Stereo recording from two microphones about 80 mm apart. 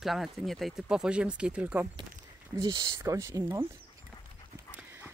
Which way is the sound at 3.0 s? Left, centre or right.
Right.